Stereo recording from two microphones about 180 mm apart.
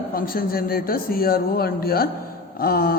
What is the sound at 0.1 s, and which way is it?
A man's voice, 55° left (ahead or behind).